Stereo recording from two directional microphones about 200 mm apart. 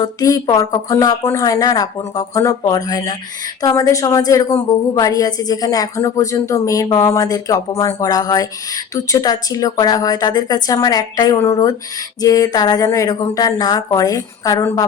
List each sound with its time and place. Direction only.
0.0 s a woman's voice: 15° left (ahead or behind)